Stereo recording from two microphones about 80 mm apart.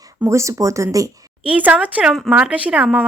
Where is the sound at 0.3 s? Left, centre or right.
Right.